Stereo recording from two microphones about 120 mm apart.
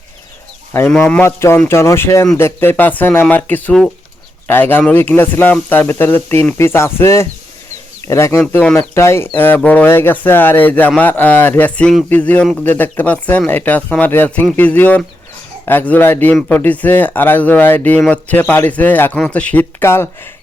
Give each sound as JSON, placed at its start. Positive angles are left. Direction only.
{"t": 0.9, "sound": "a man's voice", "side_deg": 10}
{"t": 8.6, "sound": "a man's voice", "side_deg": 10}
{"t": 9.0, "sound": "a man's voice", "side_deg": 20}